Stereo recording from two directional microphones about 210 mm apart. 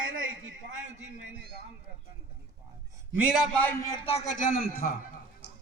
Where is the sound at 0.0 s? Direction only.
70° right (ahead or behind).